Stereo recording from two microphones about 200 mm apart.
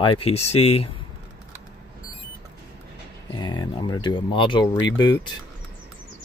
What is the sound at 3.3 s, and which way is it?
Speech, 20° left (ahead or behind).